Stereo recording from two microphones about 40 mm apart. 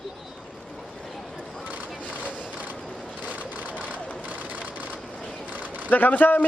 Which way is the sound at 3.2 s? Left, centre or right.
Right.